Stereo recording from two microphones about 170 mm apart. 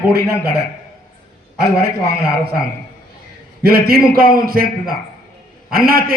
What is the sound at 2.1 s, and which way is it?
Speech, 65° right (ahead or behind).